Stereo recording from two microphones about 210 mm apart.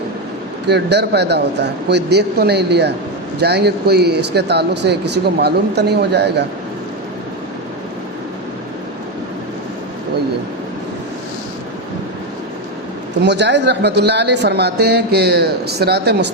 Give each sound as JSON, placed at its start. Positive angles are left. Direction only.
{"t": 0.7, "sound": "speech", "side_deg": -55}
{"t": 13.2, "sound": "speech", "side_deg": -55}